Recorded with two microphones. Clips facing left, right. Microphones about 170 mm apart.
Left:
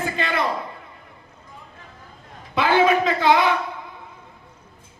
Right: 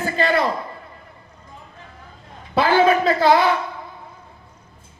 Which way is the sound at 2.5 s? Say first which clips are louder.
Right 2 dB; 35° right (ahead or behind).